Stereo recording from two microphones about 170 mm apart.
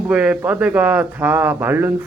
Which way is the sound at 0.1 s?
5° right (ahead or behind).